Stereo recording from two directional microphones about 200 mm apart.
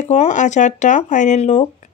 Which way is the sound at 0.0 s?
35° left (ahead or behind).